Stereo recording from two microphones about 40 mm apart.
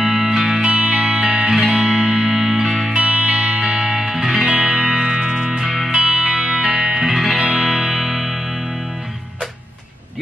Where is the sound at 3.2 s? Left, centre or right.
Right.